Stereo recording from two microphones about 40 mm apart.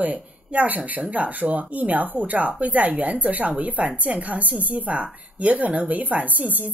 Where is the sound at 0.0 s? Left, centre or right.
Right.